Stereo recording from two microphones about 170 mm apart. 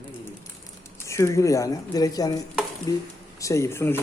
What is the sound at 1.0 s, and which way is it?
Speech, 15° left (ahead or behind).